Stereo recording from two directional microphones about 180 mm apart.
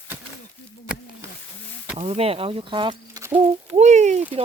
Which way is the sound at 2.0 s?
35° right (ahead or behind).